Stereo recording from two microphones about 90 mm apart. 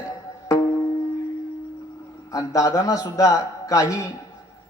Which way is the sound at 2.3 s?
40° left (ahead or behind).